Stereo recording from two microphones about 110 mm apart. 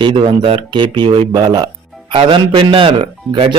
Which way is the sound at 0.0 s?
50° right (ahead or behind).